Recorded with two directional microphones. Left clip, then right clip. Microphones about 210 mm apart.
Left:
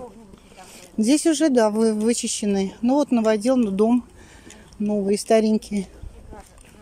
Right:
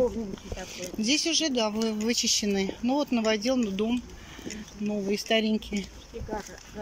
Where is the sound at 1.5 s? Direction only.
25° left (ahead or behind).